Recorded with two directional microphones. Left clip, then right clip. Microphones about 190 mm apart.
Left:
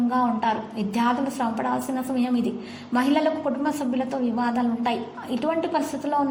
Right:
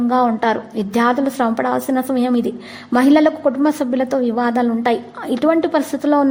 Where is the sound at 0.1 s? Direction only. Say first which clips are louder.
Right 10 dB; 40° right (ahead or behind).